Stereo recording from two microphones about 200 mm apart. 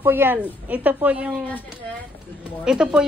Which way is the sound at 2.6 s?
5° right (ahead or behind).